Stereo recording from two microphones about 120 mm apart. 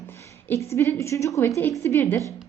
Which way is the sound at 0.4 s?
20° left (ahead or behind).